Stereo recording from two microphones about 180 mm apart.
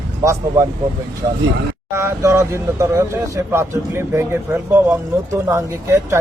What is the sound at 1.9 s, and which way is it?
Speech, 15° right (ahead or behind).